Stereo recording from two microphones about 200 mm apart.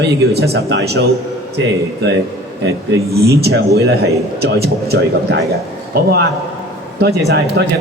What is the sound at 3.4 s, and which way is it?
A man's voice, 55° right (ahead or behind).